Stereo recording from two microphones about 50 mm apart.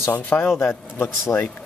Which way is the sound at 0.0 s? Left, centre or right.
Left.